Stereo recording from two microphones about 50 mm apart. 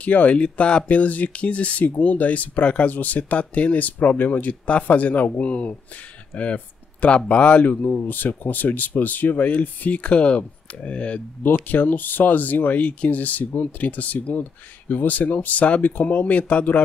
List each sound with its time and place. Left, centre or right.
0.0 s speech: left
11.4 s speech: left